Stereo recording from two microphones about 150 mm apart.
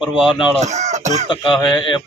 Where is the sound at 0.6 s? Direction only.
50° right (ahead or behind).